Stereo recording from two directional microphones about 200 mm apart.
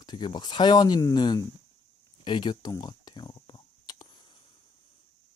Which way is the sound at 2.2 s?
20° left (ahead or behind).